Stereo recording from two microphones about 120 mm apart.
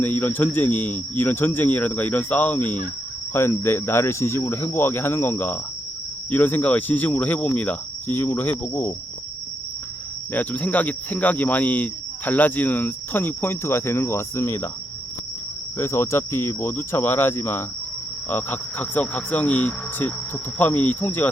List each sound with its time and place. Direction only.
0.0 s speech: 15° left (ahead or behind)
10.3 s speech: 15° left (ahead or behind)
15.8 s speech: 20° left (ahead or behind)